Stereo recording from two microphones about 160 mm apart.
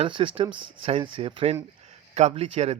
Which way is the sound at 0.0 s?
35° right (ahead or behind).